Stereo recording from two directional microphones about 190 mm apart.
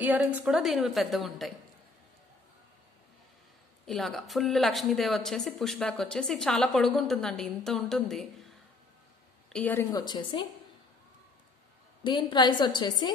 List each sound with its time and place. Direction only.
0.0 s speech: 10° right (ahead or behind)
3.8 s speech: centre (ahead or behind)
9.5 s speech: 10° left (ahead or behind)
9.8 s a woman's voice: 20° left (ahead or behind)
12.0 s a woman's voice: 25° left (ahead or behind)